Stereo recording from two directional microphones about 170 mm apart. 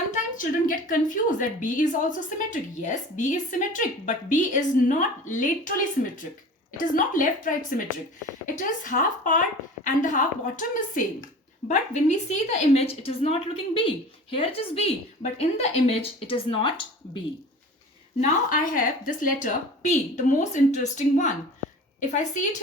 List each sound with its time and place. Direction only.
0.1 s a woman's voice: 55° left (ahead or behind)
6.7 s a woman's voice: 55° left (ahead or behind); by 16.8 s 30° left (ahead or behind)
18.3 s a woman's voice: 50° left (ahead or behind)